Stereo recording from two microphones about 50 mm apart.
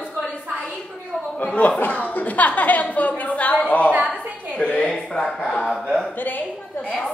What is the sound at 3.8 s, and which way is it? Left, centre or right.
Speech, right.